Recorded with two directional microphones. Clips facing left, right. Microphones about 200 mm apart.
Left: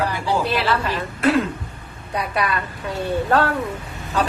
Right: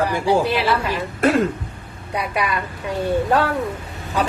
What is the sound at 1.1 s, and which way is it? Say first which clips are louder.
Speech: right 1 dB; 45° right (ahead or behind).